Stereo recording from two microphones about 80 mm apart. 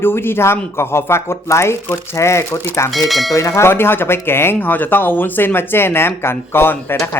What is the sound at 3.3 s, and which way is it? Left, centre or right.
Speech, left.